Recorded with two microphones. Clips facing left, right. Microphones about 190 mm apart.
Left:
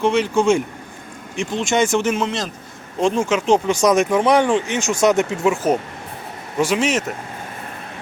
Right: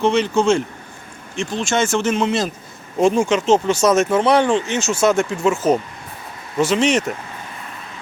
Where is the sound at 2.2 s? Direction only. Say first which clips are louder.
Right 5 dB; 5° right (ahead or behind).